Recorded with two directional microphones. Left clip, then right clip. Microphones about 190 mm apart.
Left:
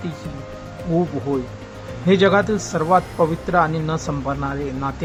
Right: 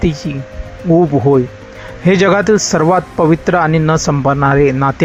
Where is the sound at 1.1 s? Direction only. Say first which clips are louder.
Right 12 dB; 35° right (ahead or behind).